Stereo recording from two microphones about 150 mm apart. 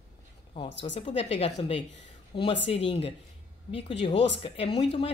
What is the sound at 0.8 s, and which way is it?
A woman's voice, 45° left (ahead or behind).